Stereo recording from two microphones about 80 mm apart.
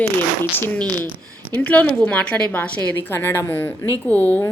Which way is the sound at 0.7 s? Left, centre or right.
Centre.